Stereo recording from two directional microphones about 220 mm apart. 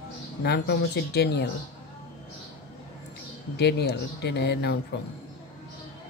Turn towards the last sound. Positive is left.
turn(degrees=50)  # may be behind; listen again after turning